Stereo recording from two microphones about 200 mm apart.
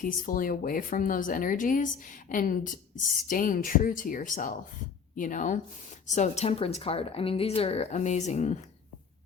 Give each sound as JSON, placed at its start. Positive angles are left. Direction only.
{"t": 0.0, "sound": "a woman's voice", "side_deg": 45}